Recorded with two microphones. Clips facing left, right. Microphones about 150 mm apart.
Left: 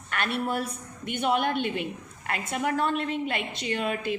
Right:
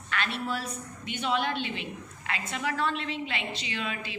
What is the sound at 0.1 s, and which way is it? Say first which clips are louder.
A woman's voice: left 3 dB; 55° left (ahead or behind).